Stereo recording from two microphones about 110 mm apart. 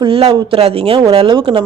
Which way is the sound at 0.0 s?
55° right (ahead or behind).